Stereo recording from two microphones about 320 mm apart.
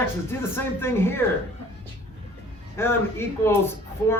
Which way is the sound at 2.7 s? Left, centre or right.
Centre.